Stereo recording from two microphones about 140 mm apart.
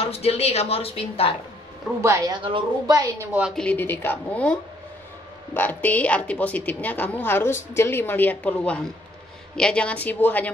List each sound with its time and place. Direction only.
0.0 s a woman's voice: 45° left (ahead or behind)
2.0 s a woman's voice: 20° right (ahead or behind)
3.5 s a woman's voice: 10° left (ahead or behind)